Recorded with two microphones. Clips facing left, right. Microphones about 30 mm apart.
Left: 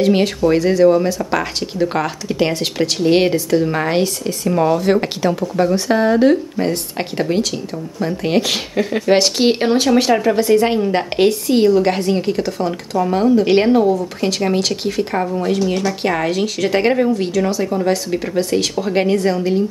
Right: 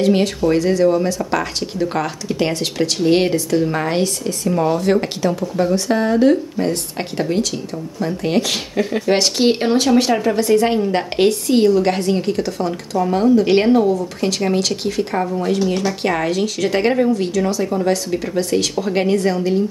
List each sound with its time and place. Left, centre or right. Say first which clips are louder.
0.0 s speech: left 1 dB; centre
15.6 s speech: left 1 dB; centre